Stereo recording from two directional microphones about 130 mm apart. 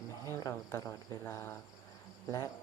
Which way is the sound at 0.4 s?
25° left (ahead or behind).